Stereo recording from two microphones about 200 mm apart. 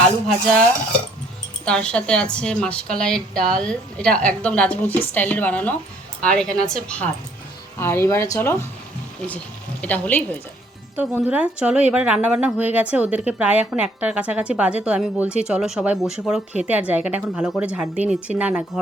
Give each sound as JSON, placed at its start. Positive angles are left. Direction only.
{"t": 1.6, "sound": "a woman's voice", "side_deg": 5}
{"t": 9.8, "sound": "speech", "side_deg": 10}
{"t": 10.9, "sound": "a woman's voice", "side_deg": -10}